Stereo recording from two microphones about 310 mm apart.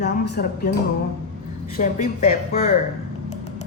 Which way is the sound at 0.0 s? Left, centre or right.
Left.